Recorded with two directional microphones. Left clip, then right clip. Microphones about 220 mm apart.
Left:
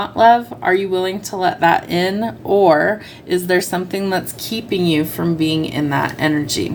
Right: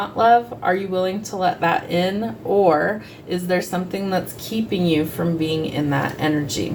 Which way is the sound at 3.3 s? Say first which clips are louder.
Left 5 dB; 50° left (ahead or behind).